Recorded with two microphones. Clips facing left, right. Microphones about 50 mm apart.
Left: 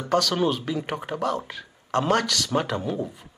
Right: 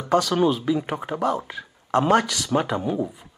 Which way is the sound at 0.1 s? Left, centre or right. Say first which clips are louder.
Right 3 dB; centre.